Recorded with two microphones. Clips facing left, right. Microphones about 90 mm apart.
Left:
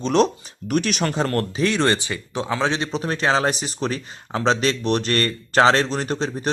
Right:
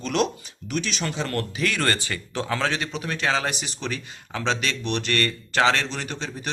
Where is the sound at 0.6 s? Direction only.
55° left (ahead or behind); by 2.8 s 20° left (ahead or behind).